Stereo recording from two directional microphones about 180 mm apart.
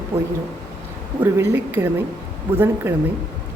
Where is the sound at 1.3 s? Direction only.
15° right (ahead or behind).